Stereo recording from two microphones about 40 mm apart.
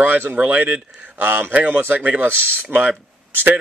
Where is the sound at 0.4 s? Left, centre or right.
Right.